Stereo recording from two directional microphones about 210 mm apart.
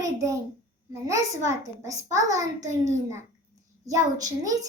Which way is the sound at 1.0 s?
15° right (ahead or behind).